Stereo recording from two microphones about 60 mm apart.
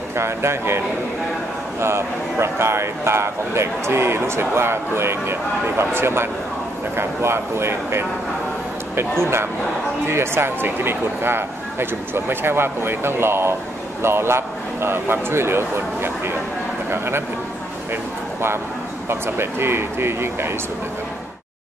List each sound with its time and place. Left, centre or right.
0.1 s speech: right
9.2 s speech: right
19.0 s speech: right